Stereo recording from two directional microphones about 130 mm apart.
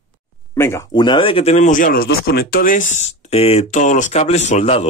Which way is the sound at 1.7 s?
90° left.